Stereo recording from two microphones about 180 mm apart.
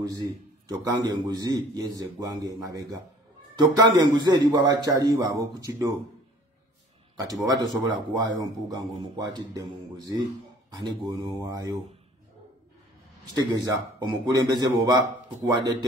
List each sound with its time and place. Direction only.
0.7 s a man's voice: 20° right (ahead or behind)
7.2 s a man's voice: 20° right (ahead or behind)
13.3 s a man's voice: 20° right (ahead or behind)